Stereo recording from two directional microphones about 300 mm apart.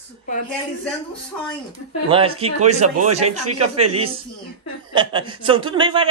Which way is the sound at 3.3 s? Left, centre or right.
Right.